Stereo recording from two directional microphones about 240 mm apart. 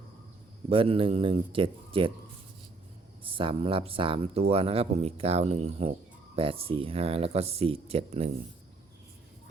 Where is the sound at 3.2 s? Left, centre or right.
Right.